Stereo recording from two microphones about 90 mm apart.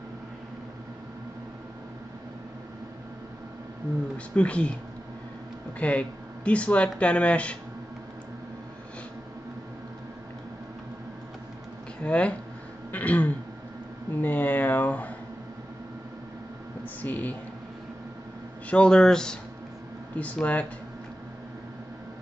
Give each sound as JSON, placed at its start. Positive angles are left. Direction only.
{"t": 4.4, "sound": "speech", "side_deg": 15}
{"t": 5.8, "sound": "speech", "side_deg": 15}
{"t": 12.0, "sound": "speech", "side_deg": 15}
{"t": 12.9, "sound": "throat clearing", "side_deg": 15}
{"t": 14.2, "sound": "a sound", "side_deg": 20}
{"t": 17.0, "sound": "a sound", "side_deg": 20}
{"t": 18.7, "sound": "speech", "side_deg": 10}